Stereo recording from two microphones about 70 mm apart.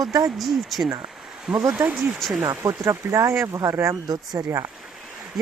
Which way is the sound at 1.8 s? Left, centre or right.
Right.